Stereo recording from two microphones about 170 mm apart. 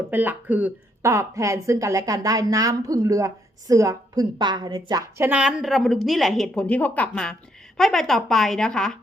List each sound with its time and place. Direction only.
0.1 s speech: 10° right (ahead or behind)